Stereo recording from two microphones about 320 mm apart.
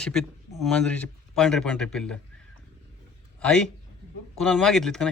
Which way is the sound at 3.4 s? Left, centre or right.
Centre.